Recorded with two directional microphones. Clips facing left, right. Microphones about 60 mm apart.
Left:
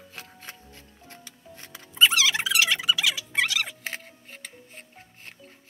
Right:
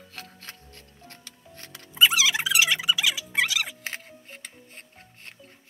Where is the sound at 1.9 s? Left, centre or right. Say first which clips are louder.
Even; centre.